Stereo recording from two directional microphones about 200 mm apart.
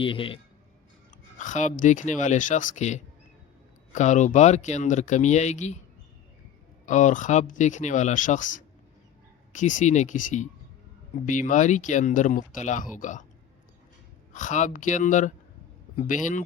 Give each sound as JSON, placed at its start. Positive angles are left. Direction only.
{"t": 0.0, "sound": "a man's voice", "side_deg": 25}
{"t": 1.4, "sound": "speech", "side_deg": 35}
{"t": 6.8, "sound": "speech", "side_deg": 40}
{"t": 14.3, "sound": "speech", "side_deg": 40}